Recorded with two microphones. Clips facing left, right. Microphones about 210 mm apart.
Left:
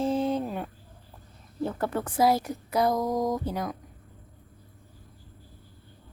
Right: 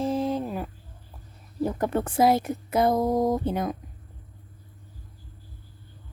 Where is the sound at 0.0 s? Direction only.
Centre (ahead or behind).